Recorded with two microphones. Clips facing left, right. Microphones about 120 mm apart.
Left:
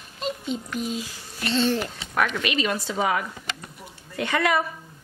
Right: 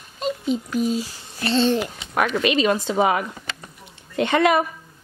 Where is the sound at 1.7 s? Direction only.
15° right (ahead or behind).